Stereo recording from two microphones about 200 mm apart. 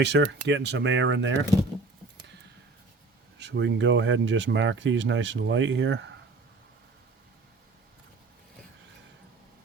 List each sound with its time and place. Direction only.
0.0 s speech: 60° right (ahead or behind)
3.3 s speech: 60° right (ahead or behind)